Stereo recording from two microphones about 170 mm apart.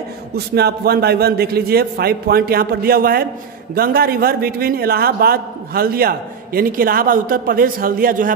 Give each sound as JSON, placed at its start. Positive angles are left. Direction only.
{"t": 0.6, "sound": "a man's voice", "side_deg": -70}